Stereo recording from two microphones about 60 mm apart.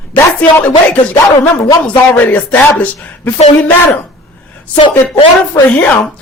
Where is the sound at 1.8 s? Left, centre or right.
Left.